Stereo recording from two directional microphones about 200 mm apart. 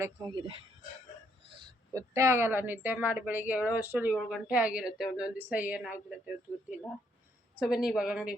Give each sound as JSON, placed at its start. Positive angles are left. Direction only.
{"t": 0.0, "sound": "a woman's voice", "side_deg": -20}
{"t": 1.5, "sound": "a woman's voice", "side_deg": -15}